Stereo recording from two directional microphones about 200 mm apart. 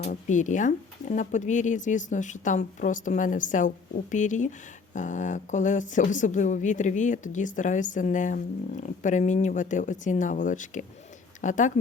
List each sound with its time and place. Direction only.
0.0 s a woman's voice: 40° left (ahead or behind)